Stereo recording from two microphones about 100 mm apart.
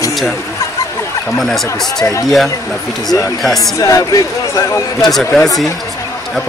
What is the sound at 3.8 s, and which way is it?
Speech, 35° left (ahead or behind).